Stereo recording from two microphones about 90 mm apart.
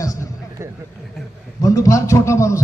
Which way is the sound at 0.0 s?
40° left (ahead or behind).